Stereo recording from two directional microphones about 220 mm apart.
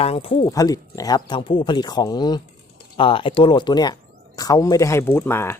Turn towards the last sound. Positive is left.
turn(degrees=10)  # may be behind; listen again after turning